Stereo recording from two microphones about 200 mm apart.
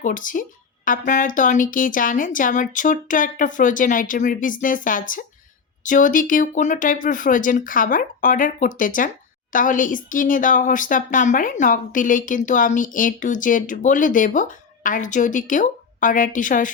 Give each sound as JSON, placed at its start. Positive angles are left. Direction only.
{"t": 0.0, "sound": "a woman's voice", "side_deg": 40}